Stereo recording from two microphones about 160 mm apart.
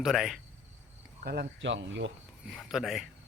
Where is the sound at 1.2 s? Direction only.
85° right.